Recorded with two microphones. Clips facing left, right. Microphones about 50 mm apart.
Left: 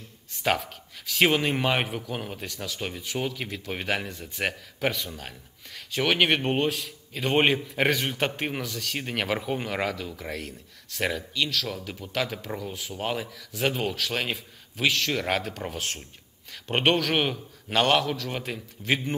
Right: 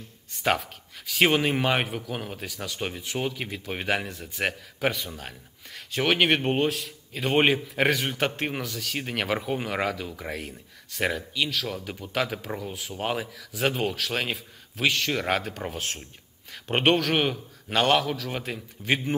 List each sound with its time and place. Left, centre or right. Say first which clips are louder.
0.3 s speech: right 1 dB; centre